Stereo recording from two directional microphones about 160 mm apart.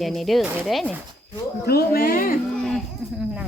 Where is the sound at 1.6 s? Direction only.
75° left (ahead or behind).